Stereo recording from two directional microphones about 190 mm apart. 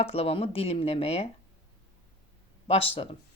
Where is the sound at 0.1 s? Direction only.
30° left (ahead or behind).